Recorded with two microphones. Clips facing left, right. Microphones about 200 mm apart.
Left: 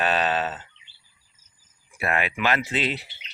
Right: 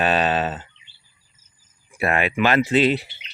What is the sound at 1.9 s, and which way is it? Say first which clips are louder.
Speech: right 5 dB; 30° right (ahead or behind).